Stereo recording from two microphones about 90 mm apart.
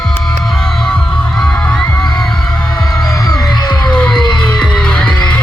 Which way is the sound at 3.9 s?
10° left (ahead or behind).